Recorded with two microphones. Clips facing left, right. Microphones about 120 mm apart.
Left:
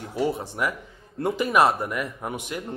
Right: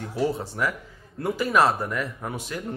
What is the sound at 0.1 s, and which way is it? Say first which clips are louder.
Speech: even; 15° left (ahead or behind).